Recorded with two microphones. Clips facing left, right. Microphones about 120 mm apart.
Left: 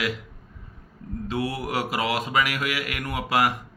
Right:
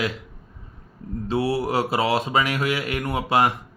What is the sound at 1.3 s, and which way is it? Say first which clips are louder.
Speech: right 6 dB; 30° right (ahead or behind).